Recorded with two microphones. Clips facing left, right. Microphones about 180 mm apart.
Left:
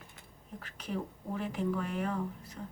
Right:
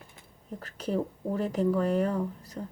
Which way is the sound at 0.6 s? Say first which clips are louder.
Right 8 dB; 40° right (ahead or behind).